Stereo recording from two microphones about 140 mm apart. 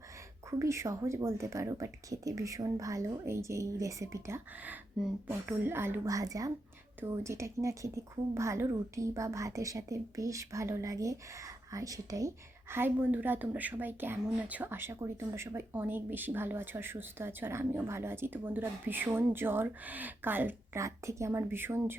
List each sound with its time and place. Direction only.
0.6 s a woman's voice: 20° right (ahead or behind)